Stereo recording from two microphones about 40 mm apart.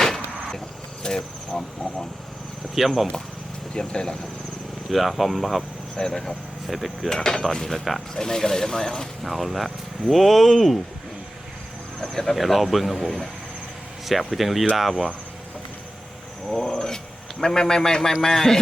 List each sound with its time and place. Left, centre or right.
0.0 s vehicle: centre
1.0 s speech: centre
2.7 s speech: centre
3.8 s speech: centre
4.9 s speech: centre
6.0 s speech: centre
7.1 s speech: centre
9.2 s speech: centre
11.9 s speech: centre
16.6 s a sound: centre
17.4 s speech: centre